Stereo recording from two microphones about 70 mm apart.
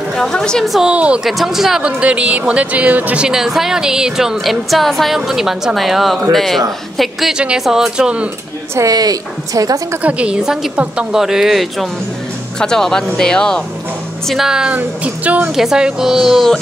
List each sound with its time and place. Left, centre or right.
0.1 s a woman's voice: centre
0.8 s speech: centre
1.2 s speech: centre; by 3.3 s right
3.3 s a woman's voice: centre
8.7 s a woman's voice: right
10.0 s a woman's voice: centre
14.2 s speech: centre
14.8 s speech: right
15.5 s a woman's voice: centre